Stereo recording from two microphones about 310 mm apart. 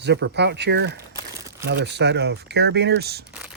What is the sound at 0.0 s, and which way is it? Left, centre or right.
Speech, right.